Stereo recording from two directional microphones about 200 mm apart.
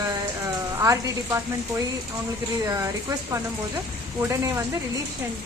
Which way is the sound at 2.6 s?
15° right (ahead or behind).